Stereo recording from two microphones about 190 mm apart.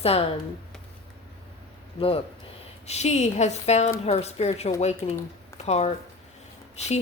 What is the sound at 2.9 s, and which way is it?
A woman's voice, 35° left (ahead or behind).